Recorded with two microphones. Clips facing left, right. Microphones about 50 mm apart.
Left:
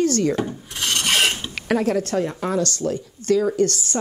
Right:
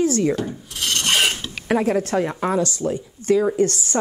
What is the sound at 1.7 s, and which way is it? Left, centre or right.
A woman's voice, right.